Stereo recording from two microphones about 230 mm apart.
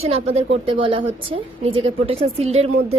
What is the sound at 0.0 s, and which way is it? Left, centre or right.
A woman's voice, right.